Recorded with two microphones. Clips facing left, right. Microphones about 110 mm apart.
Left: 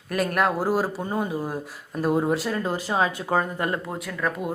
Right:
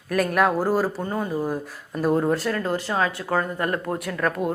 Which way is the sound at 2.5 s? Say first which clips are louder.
Even; 15° left (ahead or behind).